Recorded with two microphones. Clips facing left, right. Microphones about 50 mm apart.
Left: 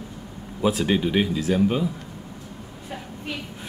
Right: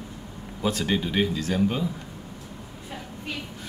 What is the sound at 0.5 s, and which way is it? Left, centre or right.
Speech, centre.